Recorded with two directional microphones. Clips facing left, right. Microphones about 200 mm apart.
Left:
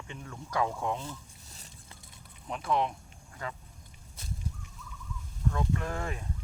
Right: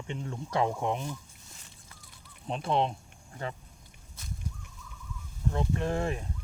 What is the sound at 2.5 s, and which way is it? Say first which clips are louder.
Speech: right 2 dB; 25° right (ahead or behind).